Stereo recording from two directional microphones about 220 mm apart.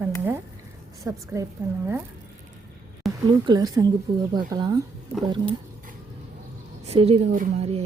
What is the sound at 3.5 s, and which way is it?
A woman's voice, 15° right (ahead or behind).